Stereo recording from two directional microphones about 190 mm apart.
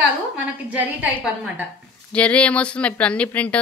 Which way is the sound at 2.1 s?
5° left (ahead or behind).